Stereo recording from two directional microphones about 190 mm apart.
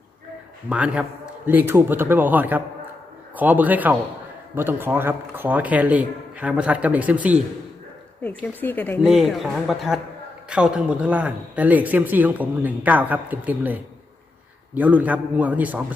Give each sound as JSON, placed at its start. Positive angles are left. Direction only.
{"t": 0.7, "sound": "a man's voice", "side_deg": -5}
{"t": 8.2, "sound": "a woman's voice", "side_deg": 10}
{"t": 9.0, "sound": "a man's voice", "side_deg": 0}